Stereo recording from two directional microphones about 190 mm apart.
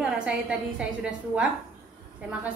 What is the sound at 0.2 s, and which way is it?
A woman's voice, 5° right (ahead or behind).